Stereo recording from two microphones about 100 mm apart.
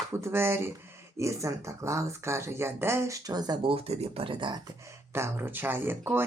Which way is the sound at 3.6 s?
80° right.